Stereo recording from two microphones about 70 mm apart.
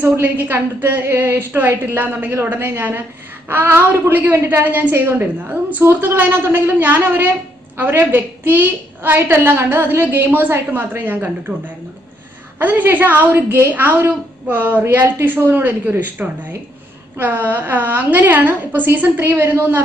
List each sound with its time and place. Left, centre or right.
0.0 s a woman's voice: right